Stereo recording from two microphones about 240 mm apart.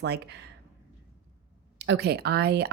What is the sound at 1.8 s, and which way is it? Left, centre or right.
Speech, right.